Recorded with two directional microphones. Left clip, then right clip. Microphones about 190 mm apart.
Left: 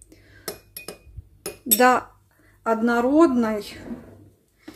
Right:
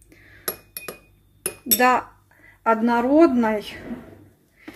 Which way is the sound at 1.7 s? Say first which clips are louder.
Left 1 dB; 20° left (ahead or behind).